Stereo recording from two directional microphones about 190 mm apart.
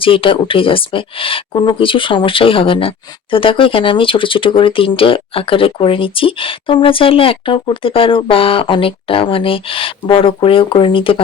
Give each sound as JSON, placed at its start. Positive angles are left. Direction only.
{"t": 0.0, "sound": "speech", "side_deg": 30}